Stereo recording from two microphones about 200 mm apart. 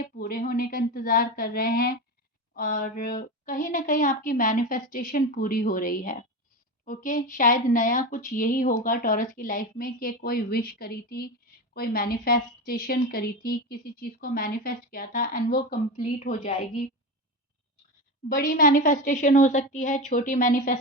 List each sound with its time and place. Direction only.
0.0 s a woman's voice: 45° left (ahead or behind)
18.3 s a woman's voice: 40° left (ahead or behind)